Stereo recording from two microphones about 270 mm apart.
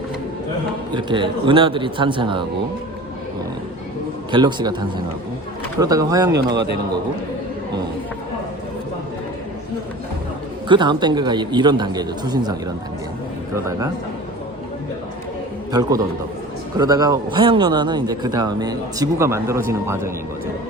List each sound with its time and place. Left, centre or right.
0.9 s a man's voice: centre
4.3 s a man's voice: centre
5.8 s a man's voice: centre
10.7 s a man's voice: centre
13.7 s a man's voice: centre
15.7 s a man's voice: centre